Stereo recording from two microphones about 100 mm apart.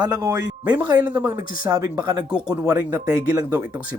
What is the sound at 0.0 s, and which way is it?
Speech, 35° right (ahead or behind).